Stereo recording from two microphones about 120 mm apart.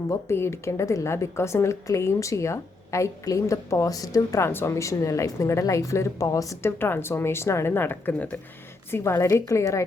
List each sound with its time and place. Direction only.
0.1 s a woman's voice: 20° left (ahead or behind)